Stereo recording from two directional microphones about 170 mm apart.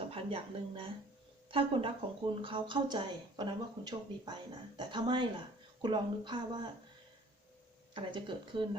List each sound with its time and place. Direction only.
0.1 s a woman's voice: 35° right (ahead or behind)
7.9 s speech: 30° right (ahead or behind)